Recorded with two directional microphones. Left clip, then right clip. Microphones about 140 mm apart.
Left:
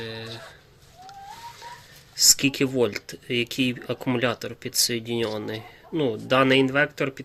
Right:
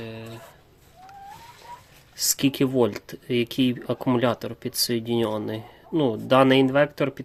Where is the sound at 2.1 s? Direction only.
25° right (ahead or behind).